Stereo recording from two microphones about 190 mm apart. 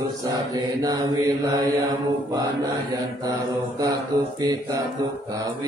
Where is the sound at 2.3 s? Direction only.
20° right (ahead or behind).